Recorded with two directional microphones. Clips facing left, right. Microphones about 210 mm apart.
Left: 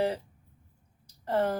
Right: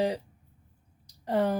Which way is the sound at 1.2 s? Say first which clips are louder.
Right 1 dB; 15° right (ahead or behind).